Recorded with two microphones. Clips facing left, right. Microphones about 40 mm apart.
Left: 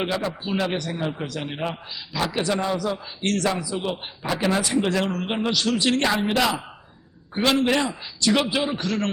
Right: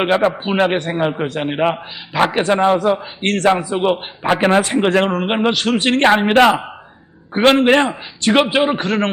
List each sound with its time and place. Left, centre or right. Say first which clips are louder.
0.0 s a man's voice: right 10 dB; right